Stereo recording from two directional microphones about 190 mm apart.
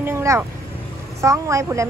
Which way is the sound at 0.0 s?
15° right (ahead or behind).